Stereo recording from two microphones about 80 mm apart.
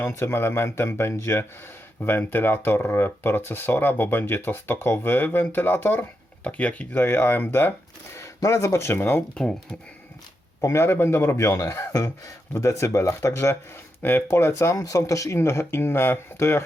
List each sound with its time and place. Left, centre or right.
0.0 s speech: left
8.4 s speech: left
10.6 s speech: left